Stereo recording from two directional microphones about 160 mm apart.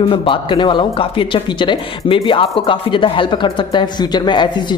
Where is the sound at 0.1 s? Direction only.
30° left (ahead or behind).